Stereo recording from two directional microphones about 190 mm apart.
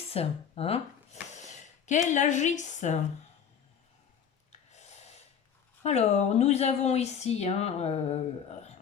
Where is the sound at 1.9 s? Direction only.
40° left (ahead or behind).